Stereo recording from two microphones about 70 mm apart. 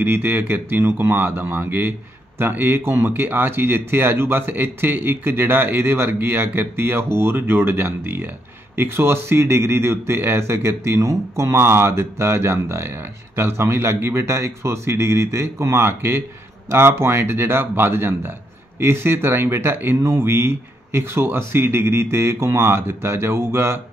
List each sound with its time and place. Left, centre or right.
0.0 s speech: right